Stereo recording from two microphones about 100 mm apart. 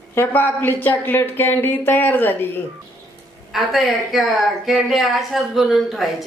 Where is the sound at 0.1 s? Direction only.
20° left (ahead or behind).